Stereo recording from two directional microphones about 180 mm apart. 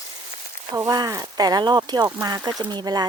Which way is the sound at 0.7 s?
20° right (ahead or behind).